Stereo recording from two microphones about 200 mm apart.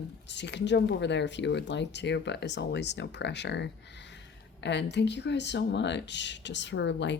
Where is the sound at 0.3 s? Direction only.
60° left (ahead or behind).